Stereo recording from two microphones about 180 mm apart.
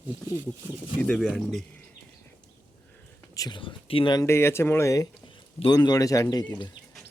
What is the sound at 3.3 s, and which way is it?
Speech, 25° left (ahead or behind).